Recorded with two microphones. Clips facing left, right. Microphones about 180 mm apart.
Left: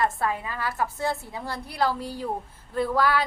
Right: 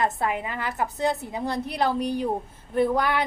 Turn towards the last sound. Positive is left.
turn(degrees=-20)  # may be behind; listen again after turning